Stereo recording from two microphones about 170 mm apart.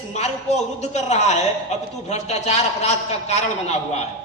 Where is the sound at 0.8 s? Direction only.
40° left (ahead or behind).